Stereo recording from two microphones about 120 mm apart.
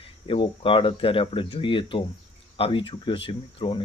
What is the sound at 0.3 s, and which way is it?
Speech, 45° left (ahead or behind).